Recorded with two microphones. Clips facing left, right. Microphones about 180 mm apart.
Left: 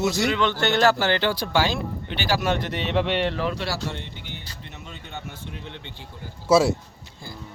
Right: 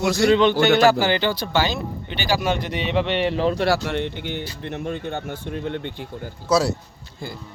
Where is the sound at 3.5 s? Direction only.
55° right (ahead or behind).